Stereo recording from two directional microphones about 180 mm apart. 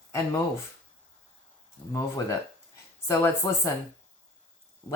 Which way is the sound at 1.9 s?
20° left (ahead or behind).